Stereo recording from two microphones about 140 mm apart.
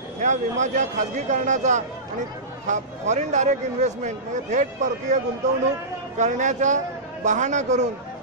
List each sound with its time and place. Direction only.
0.2 s speech: 60° right (ahead or behind)